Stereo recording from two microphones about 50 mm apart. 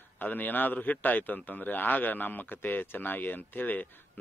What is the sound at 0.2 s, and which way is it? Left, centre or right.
Speech, left.